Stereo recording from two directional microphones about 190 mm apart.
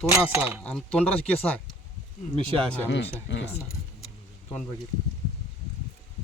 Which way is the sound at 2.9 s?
70° left (ahead or behind).